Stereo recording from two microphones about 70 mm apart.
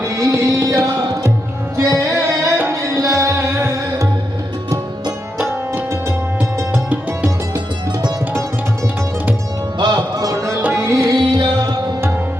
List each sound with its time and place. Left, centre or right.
0.0 s music: right
1.7 s tabla: right
2.6 s music: right
5.5 s tabla: right
9.7 s music: right
10.8 s music: right
11.1 s music: right